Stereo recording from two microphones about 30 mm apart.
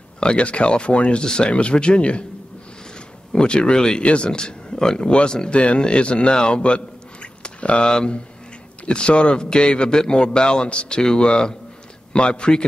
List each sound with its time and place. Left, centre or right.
0.2 s a man's voice: left
1.2 s speech: left
1.5 s a man's voice: left
3.3 s a man's voice: left
4.0 s a man's voice: left
4.3 s a man's voice: left
5.5 s a man's voice: left
6.3 s a sound: left
7.8 s a man's voice: left